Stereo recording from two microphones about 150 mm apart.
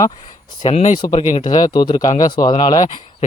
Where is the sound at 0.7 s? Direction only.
50° left (ahead or behind).